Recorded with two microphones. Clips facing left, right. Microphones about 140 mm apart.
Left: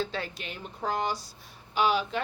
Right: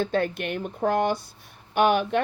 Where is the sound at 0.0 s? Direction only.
55° right (ahead or behind).